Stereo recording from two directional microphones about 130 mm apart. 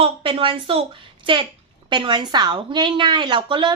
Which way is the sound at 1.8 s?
35° right (ahead or behind).